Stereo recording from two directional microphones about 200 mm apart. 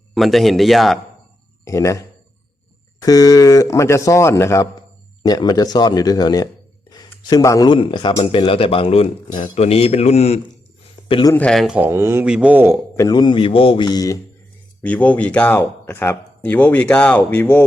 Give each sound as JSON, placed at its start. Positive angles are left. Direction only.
{"t": 0.1, "sound": "speech", "side_deg": 0}
{"t": 1.6, "sound": "a man's voice", "side_deg": 15}
{"t": 11.1, "sound": "a man's voice", "side_deg": 20}
{"t": 11.3, "sound": "speech", "side_deg": 5}
{"t": 13.0, "sound": "a man's voice", "side_deg": 20}
{"t": 14.8, "sound": "speech", "side_deg": 5}